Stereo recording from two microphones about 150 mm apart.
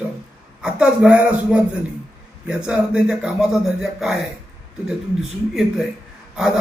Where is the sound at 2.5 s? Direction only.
5° right (ahead or behind).